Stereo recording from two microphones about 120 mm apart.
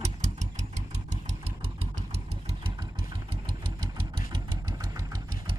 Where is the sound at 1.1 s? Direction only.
70° right (ahead or behind).